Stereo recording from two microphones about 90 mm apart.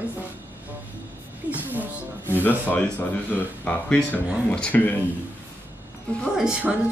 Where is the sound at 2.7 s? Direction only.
15° left (ahead or behind).